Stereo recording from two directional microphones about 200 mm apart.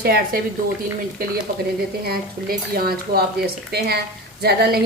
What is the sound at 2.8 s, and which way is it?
A woman's voice, 50° right (ahead or behind).